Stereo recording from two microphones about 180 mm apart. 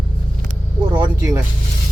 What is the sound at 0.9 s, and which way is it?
Music, 20° right (ahead or behind).